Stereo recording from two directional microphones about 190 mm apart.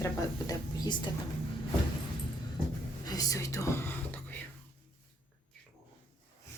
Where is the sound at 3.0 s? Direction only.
20° left (ahead or behind).